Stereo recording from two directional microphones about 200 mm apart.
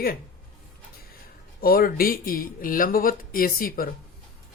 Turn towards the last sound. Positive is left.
turn(degrees=45)  # may be behind; listen again after turning